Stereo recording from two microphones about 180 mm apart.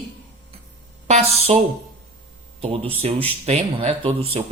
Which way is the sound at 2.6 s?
35° right (ahead or behind).